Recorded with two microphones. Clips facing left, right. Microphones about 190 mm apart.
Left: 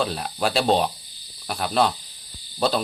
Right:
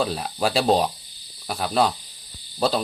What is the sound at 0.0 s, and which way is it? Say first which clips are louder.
Speech: right 1 dB; 5° right (ahead or behind).